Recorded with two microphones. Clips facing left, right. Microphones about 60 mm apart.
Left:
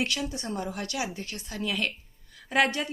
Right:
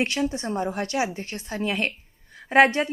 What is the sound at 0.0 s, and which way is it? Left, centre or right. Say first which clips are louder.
Speech: right 6 dB; right.